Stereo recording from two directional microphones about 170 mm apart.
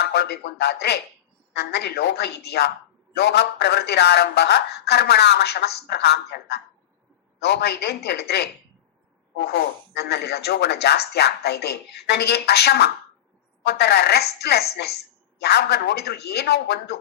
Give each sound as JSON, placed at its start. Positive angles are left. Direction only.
{"t": 0.0, "sound": "speech", "side_deg": 75}
{"t": 9.5, "sound": "speech", "side_deg": 75}